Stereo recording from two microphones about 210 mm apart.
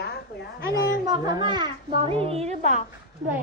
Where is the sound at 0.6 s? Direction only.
20° right (ahead or behind).